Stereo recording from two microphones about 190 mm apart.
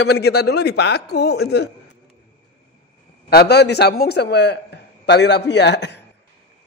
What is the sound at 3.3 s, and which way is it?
Speech, 60° left (ahead or behind).